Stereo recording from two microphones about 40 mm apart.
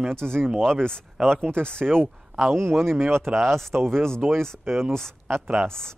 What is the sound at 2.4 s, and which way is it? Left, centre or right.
Speech, right.